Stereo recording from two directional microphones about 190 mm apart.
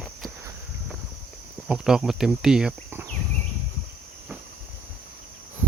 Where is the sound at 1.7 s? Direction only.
5° right (ahead or behind).